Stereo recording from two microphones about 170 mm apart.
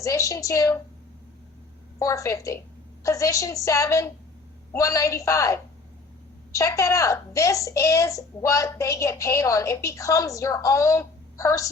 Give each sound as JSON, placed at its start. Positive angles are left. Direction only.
{"t": 0.0, "sound": "a child's voice", "side_deg": 20}
{"t": 2.0, "sound": "a child's voice", "side_deg": 20}